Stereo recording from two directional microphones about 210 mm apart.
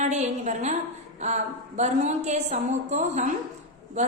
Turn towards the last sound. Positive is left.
turn(degrees=-35)  # may be behind; listen again after turning